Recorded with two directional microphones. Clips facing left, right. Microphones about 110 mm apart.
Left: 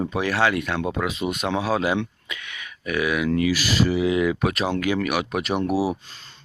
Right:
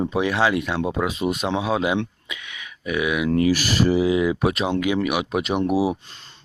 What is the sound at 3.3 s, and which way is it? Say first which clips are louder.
Speech: right 2 dB; 40° right (ahead or behind).